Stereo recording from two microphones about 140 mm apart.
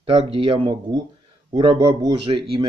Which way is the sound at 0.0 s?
40° right (ahead or behind).